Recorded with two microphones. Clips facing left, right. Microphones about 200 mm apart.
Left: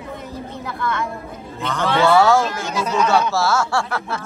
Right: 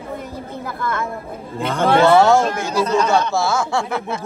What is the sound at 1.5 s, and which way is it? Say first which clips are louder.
Speech: right 4 dB; 50° right (ahead or behind).